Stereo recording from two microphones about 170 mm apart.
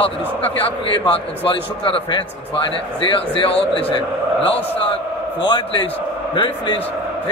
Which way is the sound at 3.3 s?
30° left (ahead or behind).